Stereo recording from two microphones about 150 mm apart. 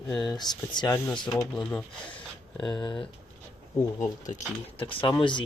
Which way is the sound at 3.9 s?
55° left (ahead or behind).